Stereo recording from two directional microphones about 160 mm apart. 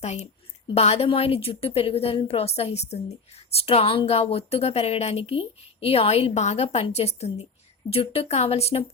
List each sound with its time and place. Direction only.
0.0 s a woman's voice: 45° left (ahead or behind)